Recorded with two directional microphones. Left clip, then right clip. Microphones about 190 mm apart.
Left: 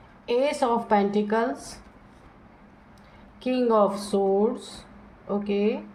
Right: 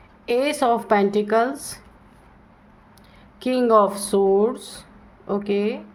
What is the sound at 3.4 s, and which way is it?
Speech, 50° right (ahead or behind).